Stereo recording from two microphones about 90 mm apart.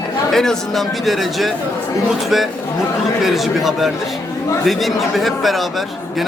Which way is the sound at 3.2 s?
5° right (ahead or behind).